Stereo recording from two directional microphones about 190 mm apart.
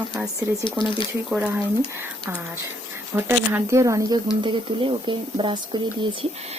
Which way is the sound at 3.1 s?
10° right (ahead or behind).